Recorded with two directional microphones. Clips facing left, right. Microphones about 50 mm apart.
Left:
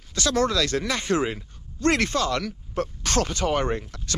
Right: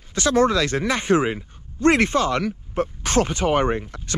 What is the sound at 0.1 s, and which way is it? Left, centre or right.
Speech, right.